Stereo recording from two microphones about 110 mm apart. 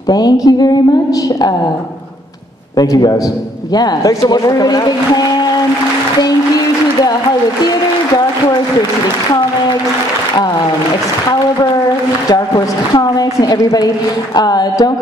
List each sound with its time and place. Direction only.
0.1 s a woman's voice: 35° left (ahead or behind)
2.8 s a woman's voice: 35° left (ahead or behind)
12.3 s a woman's voice: 35° left (ahead or behind)